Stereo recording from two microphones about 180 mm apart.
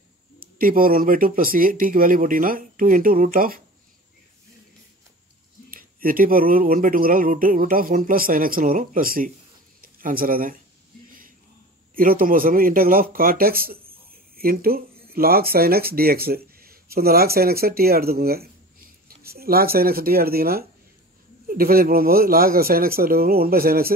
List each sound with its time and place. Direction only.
0.4 s speech: 50° right (ahead or behind)
5.7 s speech: 50° right (ahead or behind)
9.8 s a sound: 55° right (ahead or behind)
11.9 s speech: 50° right (ahead or behind)